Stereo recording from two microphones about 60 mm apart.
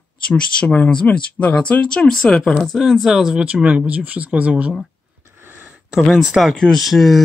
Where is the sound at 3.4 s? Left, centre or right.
Centre.